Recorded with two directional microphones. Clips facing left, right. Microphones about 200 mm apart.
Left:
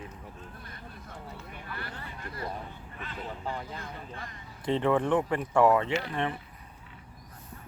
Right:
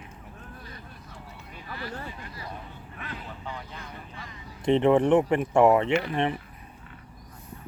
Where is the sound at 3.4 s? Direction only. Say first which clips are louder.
Left 3 dB; 40° left (ahead or behind).